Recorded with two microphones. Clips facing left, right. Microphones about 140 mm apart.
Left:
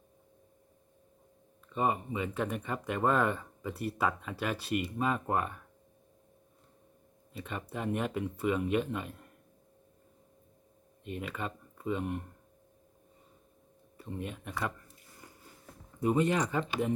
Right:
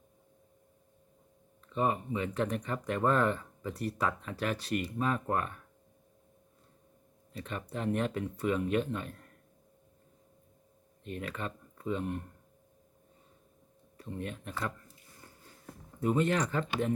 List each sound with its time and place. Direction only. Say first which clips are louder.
1.7 s speech: even; 5° left (ahead or behind)
7.4 s speech: right 1 dB; 5° left (ahead or behind)
11.0 s speech: even; 5° left (ahead or behind)
14.0 s speech: even; 5° left (ahead or behind)
16.0 s speech: left 1 dB; 15° left (ahead or behind)